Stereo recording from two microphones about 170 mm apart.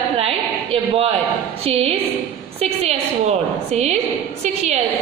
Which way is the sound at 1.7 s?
35° right (ahead or behind).